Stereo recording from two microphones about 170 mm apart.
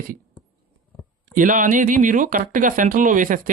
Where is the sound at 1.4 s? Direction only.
50° right (ahead or behind).